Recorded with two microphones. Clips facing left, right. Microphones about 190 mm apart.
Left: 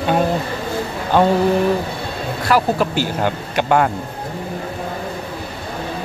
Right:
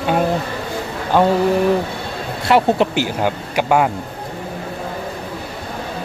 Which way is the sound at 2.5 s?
20° right (ahead or behind).